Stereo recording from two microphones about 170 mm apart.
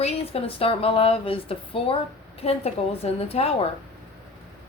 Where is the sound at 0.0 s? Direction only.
35° left (ahead or behind).